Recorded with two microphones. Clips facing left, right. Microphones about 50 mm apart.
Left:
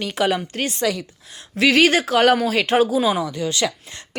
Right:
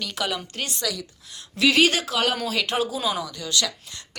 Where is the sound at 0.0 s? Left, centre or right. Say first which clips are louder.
Left 7 dB; left.